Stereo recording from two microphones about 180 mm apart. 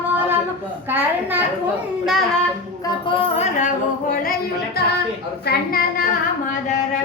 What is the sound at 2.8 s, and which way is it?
Music, 30° left (ahead or behind).